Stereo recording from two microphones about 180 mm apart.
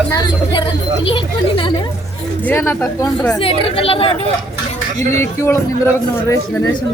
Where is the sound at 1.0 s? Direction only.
30° left (ahead or behind).